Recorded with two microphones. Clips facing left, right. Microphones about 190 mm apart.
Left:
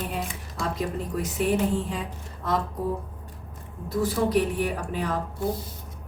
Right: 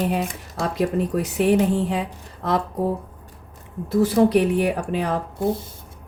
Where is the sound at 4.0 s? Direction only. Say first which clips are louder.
Right 7 dB; 70° right (ahead or behind).